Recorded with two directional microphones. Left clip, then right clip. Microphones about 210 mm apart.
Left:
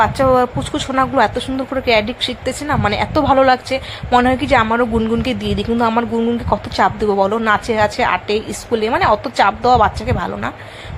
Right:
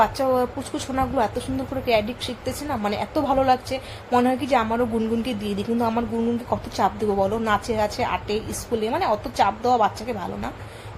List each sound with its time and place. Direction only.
0.0 s a woman's voice: 15° left (ahead or behind)